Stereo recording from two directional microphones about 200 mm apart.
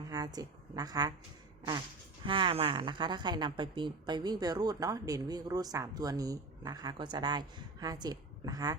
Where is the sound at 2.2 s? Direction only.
25° right (ahead or behind).